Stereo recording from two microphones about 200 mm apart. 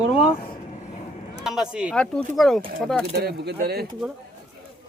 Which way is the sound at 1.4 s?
5° right (ahead or behind).